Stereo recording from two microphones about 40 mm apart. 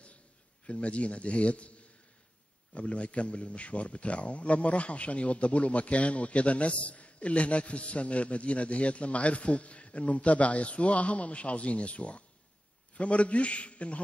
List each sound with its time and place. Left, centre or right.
0.7 s a man's voice: left
2.7 s a man's voice: left